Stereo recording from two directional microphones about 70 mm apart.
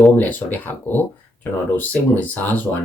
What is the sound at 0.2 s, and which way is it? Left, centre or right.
Speech, left.